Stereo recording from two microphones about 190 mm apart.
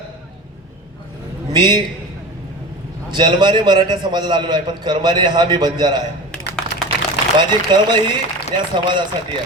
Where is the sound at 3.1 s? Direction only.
25° right (ahead or behind).